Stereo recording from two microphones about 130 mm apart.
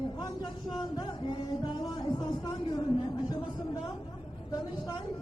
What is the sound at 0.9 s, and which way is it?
Music, 35° left (ahead or behind).